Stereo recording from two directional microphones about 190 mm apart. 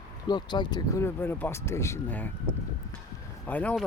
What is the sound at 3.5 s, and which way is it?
Speech, 10° left (ahead or behind).